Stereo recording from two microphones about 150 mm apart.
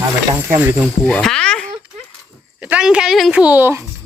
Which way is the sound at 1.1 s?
5° left (ahead or behind).